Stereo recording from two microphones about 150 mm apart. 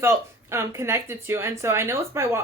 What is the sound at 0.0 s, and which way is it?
A woman's voice, 15° right (ahead or behind).